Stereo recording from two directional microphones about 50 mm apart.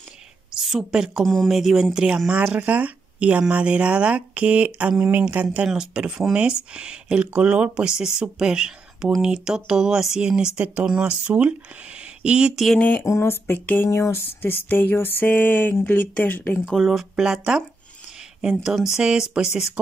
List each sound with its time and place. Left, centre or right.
0.5 s a woman's voice: centre
1.2 s speech: centre
1.5 s speech: centre; by 5.1 s right
5.3 s speech: right
5.6 s speech: centre
10.6 s speech: right
12.0 s a sound: centre
13.0 s speech: left
13.8 s a sound: left
15.9 s speech: left
16.6 s speech: centre
17.3 s speech: centre